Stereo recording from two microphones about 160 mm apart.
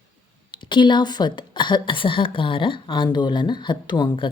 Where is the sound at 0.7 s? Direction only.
30° left (ahead or behind).